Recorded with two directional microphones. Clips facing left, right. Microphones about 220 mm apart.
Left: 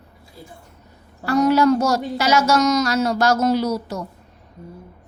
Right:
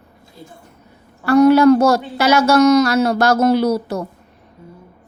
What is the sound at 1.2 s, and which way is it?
Speech, 60° right (ahead or behind).